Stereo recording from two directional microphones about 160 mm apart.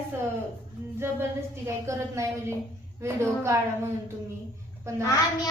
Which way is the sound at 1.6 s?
20° right (ahead or behind).